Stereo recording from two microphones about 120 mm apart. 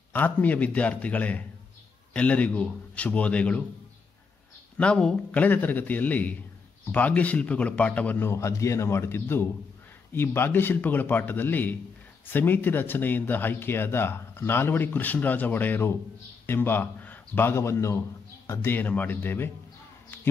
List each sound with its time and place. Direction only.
0.1 s speech: 15° left (ahead or behind)
4.7 s speech: 10° left (ahead or behind)